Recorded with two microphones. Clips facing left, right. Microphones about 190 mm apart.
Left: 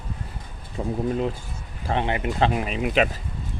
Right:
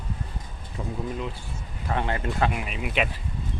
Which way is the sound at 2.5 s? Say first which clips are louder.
Left 6 dB; 35° left (ahead or behind).